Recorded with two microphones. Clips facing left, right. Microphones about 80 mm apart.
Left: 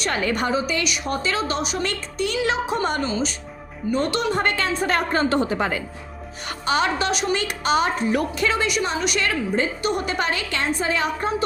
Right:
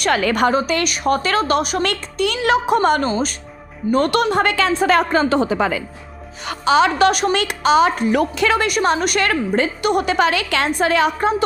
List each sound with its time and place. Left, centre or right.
0.0 s a woman's voice: right
0.5 s a woman's voice: right
1.1 s a woman's voice: right
3.0 s a woman's voice: right
3.9 s a woman's voice: right
6.7 s a woman's voice: right
7.1 s a woman's voice: right
7.3 s a woman's voice: right
8.6 s a woman's voice: right